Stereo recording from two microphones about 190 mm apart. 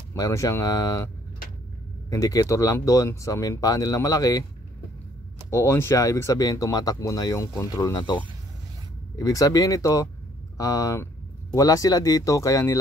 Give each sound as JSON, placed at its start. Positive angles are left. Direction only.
{"t": 0.1, "sound": "speech", "side_deg": 15}
{"t": 5.5, "sound": "speech", "side_deg": 15}